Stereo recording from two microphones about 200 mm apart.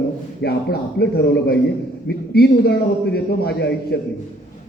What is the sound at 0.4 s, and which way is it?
A man's voice, 50° left (ahead or behind).